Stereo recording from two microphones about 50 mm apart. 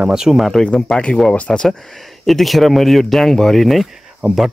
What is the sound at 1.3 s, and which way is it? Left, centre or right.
Speech, left.